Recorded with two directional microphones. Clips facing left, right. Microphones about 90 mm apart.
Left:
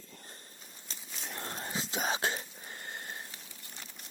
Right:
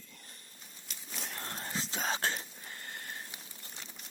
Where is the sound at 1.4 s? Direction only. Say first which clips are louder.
Left 2 dB; 10° left (ahead or behind).